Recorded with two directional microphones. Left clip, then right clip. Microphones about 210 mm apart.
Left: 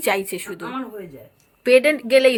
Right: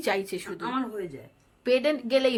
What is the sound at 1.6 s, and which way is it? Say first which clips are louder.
Speech: left 9 dB; 15° left (ahead or behind).